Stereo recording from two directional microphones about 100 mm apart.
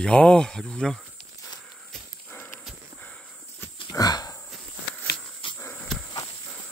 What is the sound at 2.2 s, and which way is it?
Horse, 20° left (ahead or behind).